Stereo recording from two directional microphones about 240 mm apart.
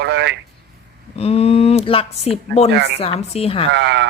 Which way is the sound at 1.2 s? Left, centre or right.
Left.